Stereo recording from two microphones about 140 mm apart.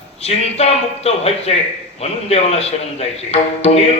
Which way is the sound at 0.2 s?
45° left (ahead or behind).